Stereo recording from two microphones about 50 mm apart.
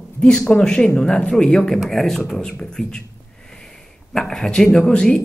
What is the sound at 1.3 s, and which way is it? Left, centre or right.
Speech, centre.